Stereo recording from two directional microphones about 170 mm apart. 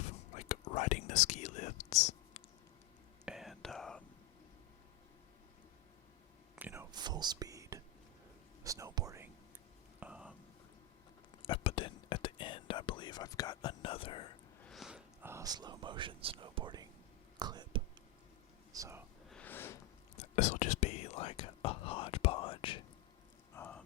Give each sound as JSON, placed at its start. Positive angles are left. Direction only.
{"t": 0.3, "sound": "whispering", "side_deg": 45}
{"t": 3.2, "sound": "whispering", "side_deg": 0}
{"t": 6.6, "sound": "whispering", "side_deg": -10}
{"t": 6.9, "sound": "whispering", "side_deg": -25}
{"t": 11.4, "sound": "whispering", "side_deg": 30}
{"t": 14.6, "sound": "a sound", "side_deg": 0}
{"t": 15.3, "sound": "speech", "side_deg": -20}
{"t": 17.4, "sound": "whispering", "side_deg": -25}
{"t": 18.7, "sound": "a sound", "side_deg": -15}
{"t": 19.3, "sound": "a sound", "side_deg": 10}
{"t": 20.1, "sound": "whispering", "side_deg": 45}
{"t": 23.6, "sound": "a sound", "side_deg": 10}